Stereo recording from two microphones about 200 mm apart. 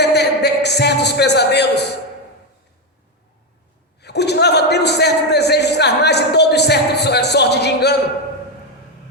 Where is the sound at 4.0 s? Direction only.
55° left (ahead or behind).